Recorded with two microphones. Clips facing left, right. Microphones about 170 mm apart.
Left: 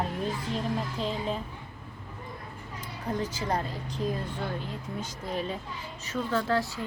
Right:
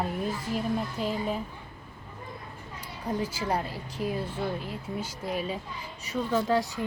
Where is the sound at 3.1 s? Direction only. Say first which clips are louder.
Right 1 dB; 10° right (ahead or behind).